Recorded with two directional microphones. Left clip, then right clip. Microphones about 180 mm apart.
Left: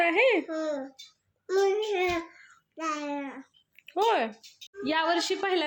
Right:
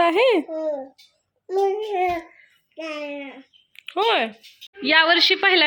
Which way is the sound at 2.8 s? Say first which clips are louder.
Right 2 dB; 20° left (ahead or behind).